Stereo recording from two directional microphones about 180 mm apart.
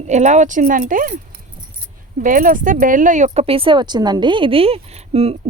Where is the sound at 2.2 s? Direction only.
50° right (ahead or behind).